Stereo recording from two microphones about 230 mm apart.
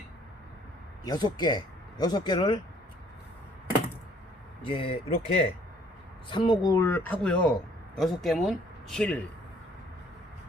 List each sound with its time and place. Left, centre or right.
1.0 s speech: centre
4.6 s speech: left; by 9.2 s centre